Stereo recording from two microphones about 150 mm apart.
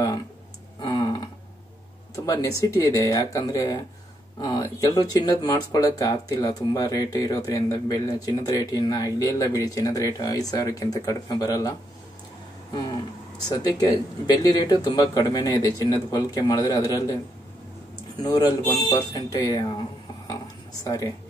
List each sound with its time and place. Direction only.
0.7 s a sound: 25° left (ahead or behind)
2.1 s speech: 20° left (ahead or behind)
13.7 s speech: 25° left (ahead or behind)
18.2 s speech: 25° left (ahead or behind)
20.8 s speech: 20° left (ahead or behind)